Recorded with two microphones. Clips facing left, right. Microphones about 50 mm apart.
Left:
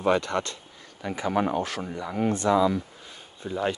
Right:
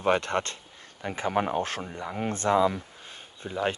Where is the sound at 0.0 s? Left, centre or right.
Right.